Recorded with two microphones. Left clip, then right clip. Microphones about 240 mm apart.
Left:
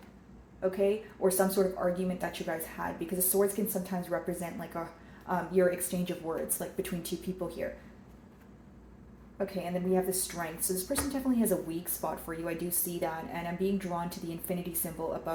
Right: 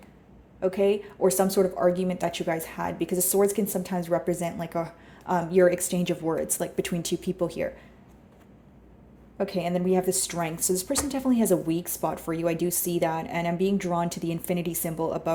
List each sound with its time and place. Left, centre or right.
0.6 s speech: right
9.9 s speech: right